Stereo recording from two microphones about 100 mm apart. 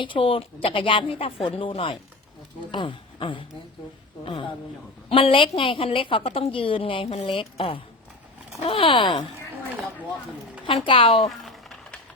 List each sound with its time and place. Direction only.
0.0 s a woman's voice: 60° left (ahead or behind)
5.0 s a woman's voice: 60° left (ahead or behind)
10.8 s a woman's voice: 60° left (ahead or behind)
11.3 s a sound: centre (ahead or behind)